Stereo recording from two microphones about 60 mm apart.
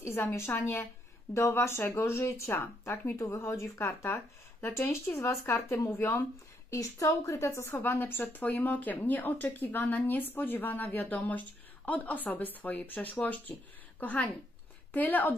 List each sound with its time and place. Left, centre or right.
0.1 s a woman's voice: left
1.3 s speech: left
6.7 s a woman's voice: left
7.3 s a woman's voice: left